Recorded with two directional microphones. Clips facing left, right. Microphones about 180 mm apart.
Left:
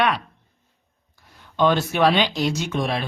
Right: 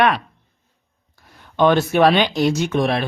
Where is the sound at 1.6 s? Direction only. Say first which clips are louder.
Right 4 dB; 55° right (ahead or behind).